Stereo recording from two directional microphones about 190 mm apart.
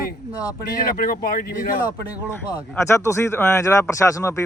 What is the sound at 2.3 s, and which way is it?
A man's voice, 20° left (ahead or behind).